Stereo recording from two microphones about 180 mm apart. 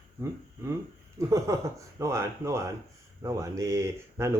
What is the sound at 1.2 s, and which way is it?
A man's voice, 15° right (ahead or behind).